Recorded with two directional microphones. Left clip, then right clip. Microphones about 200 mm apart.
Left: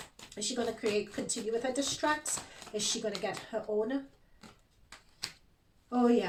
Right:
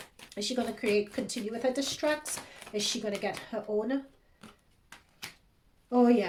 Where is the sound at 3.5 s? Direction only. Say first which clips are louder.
Even; 55° right (ahead or behind).